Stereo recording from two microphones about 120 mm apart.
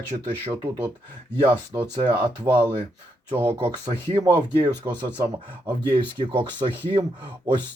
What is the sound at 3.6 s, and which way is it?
Speech, 40° right (ahead or behind).